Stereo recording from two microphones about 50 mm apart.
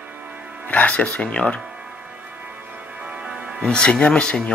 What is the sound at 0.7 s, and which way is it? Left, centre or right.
Speech, left.